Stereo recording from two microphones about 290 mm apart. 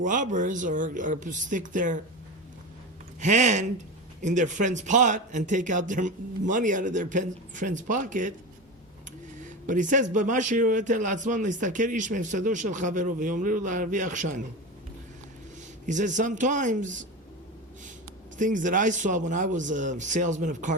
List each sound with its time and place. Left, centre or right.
0.0 s speech: right
3.2 s speech: right
9.6 s speech: right
15.9 s speech: right
18.3 s speech: right